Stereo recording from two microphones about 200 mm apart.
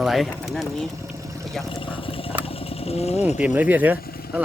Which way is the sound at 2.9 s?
30° left (ahead or behind).